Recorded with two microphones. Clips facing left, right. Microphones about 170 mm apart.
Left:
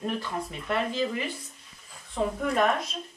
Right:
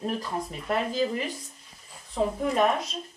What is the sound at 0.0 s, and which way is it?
Speech, 35° right (ahead or behind).